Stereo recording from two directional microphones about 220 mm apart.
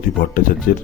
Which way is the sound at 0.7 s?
40° left (ahead or behind).